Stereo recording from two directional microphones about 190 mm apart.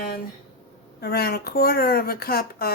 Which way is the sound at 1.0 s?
55° left (ahead or behind).